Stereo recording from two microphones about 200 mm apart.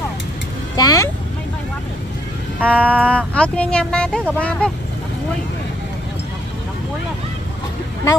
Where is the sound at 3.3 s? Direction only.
5° left (ahead or behind).